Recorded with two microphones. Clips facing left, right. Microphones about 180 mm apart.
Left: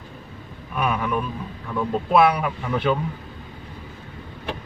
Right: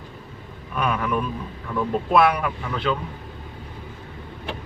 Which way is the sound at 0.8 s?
5° left (ahead or behind).